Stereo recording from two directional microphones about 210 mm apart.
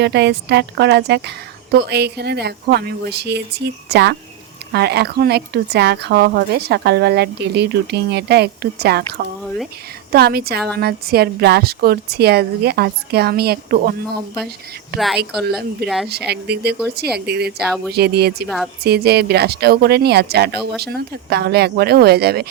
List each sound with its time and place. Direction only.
0.0 s speech: 55° right (ahead or behind)
14.9 s speech: centre (ahead or behind)
16.0 s speech: 50° right (ahead or behind)
18.4 s speech: centre (ahead or behind)
18.8 s speech: 50° right (ahead or behind)